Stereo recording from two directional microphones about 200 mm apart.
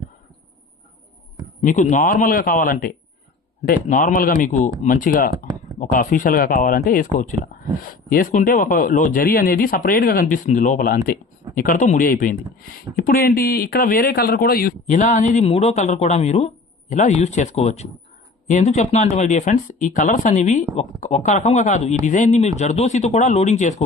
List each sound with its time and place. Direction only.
1.6 s speech: 40° left (ahead or behind)